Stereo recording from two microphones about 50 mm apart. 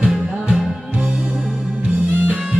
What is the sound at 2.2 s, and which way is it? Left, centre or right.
Music, right.